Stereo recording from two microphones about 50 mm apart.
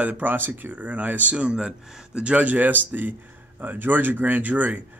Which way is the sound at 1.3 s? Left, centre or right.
Right.